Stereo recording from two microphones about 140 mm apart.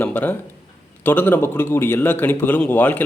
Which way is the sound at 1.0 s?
15° left (ahead or behind).